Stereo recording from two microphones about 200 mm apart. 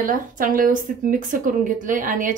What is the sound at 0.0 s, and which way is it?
Speech, 40° right (ahead or behind).